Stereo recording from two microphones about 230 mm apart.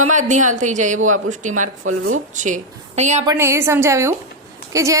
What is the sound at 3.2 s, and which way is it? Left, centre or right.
A woman's voice, centre.